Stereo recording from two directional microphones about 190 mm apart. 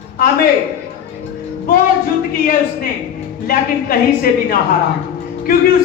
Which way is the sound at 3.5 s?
50° left (ahead or behind).